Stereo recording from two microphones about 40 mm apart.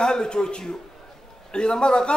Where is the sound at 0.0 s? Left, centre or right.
Centre.